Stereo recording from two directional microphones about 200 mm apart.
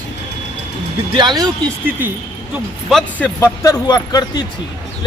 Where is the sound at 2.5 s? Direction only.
Centre (ahead or behind).